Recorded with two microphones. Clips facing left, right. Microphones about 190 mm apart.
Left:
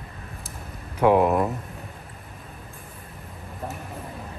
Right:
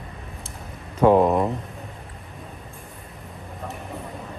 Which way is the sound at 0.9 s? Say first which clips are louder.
Right 2 dB; 10° left (ahead or behind).